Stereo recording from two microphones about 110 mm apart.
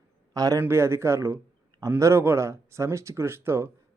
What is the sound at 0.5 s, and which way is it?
Speech, 20° right (ahead or behind).